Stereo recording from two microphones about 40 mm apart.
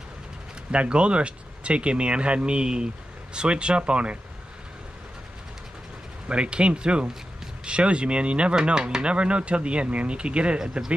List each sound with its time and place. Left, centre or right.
0.7 s speech: right
6.2 s speech: right
10.6 s speech: centre